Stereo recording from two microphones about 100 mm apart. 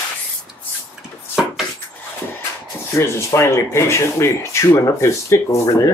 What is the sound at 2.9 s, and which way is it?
Speech, 30° left (ahead or behind).